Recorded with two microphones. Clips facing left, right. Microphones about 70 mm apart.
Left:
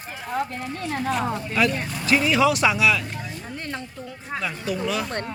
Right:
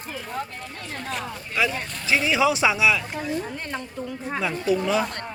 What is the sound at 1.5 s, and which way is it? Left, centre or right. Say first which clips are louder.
Speech: left 1 dB; centre.